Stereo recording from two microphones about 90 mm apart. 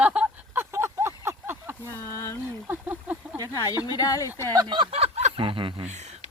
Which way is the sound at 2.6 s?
25° right (ahead or behind).